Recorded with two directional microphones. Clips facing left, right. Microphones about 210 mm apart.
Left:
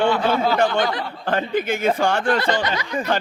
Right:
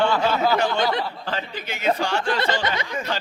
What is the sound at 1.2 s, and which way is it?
A man's voice, 55° left (ahead or behind).